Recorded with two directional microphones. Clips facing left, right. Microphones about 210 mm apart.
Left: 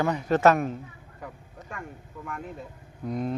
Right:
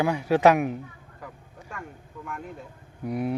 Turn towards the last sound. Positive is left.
turn(degrees=-10)  # may be behind; listen again after turning